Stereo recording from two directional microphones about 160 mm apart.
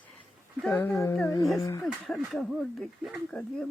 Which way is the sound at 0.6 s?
Centre (ahead or behind).